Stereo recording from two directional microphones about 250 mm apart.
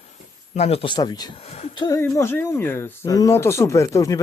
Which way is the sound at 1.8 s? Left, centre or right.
Centre.